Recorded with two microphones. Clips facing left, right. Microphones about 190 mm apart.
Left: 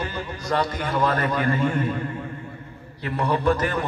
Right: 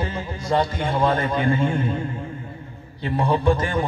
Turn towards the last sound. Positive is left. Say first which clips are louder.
# right 1 dB
turn(degrees=-30)  # may be behind; listen again after turning